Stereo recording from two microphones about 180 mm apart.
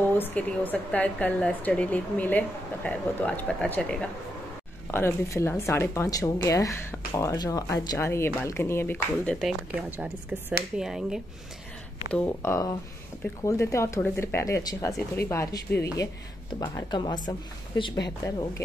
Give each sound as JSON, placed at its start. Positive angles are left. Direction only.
{"t": 0.1, "sound": "speech", "side_deg": 10}
{"t": 12.1, "sound": "speech", "side_deg": 10}